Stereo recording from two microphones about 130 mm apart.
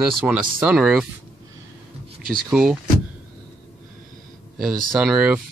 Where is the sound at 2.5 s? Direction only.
5° right (ahead or behind).